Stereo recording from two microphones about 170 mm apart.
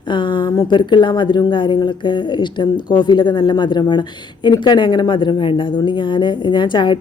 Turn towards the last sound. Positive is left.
turn(degrees=25)  # may be behind; listen again after turning